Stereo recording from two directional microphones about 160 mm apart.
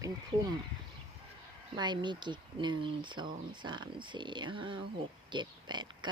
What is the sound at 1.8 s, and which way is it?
Speech, 30° right (ahead or behind).